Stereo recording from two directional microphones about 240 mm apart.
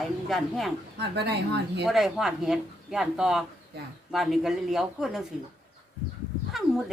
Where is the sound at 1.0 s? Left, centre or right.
Right.